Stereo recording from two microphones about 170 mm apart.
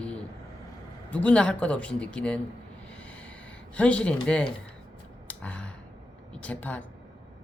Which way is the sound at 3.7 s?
5° left (ahead or behind).